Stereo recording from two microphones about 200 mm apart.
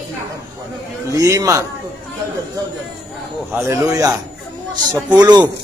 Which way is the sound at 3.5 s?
15° right (ahead or behind).